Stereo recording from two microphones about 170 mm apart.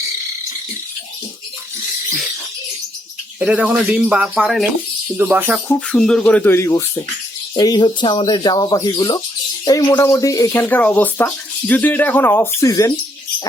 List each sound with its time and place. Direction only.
3.4 s speech: 5° right (ahead or behind)
5.6 s speech: 5° left (ahead or behind)